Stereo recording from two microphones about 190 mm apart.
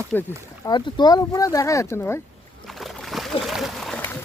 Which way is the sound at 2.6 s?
Centre (ahead or behind).